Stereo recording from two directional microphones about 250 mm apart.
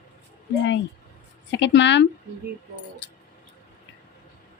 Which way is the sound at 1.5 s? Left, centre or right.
Left.